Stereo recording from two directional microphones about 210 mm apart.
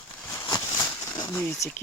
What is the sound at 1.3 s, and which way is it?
Speech, 5° left (ahead or behind).